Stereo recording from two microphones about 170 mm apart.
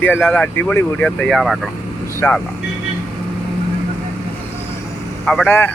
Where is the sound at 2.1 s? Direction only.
10° left (ahead or behind).